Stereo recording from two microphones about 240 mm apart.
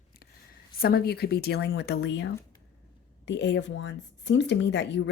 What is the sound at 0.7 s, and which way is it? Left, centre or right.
Speech, left.